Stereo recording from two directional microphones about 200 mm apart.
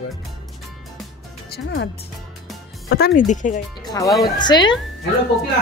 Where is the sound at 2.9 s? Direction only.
45° left (ahead or behind).